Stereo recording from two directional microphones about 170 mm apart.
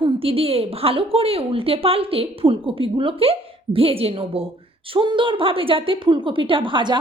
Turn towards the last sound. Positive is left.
turn(degrees=-30)  # may be behind; listen again after turning